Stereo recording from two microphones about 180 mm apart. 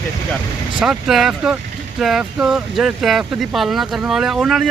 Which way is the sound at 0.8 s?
Centre (ahead or behind).